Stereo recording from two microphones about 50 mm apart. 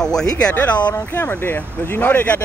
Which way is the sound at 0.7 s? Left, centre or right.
Left.